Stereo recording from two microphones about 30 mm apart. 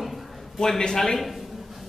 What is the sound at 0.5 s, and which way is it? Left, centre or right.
Speech, centre.